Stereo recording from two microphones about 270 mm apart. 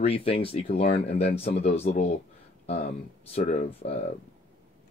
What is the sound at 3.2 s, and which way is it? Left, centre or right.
Speech, left.